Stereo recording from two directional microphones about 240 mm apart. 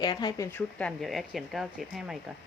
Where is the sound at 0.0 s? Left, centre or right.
Centre.